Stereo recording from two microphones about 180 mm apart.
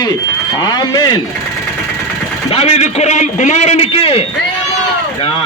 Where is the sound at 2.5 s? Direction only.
35° left (ahead or behind).